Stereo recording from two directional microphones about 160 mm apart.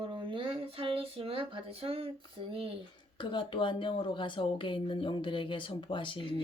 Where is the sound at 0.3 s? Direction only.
35° right (ahead or behind).